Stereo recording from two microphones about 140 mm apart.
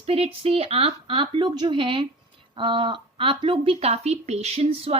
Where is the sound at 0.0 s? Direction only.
45° right (ahead or behind).